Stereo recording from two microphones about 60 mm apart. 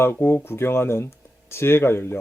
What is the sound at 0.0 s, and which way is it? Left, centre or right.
Speech, left.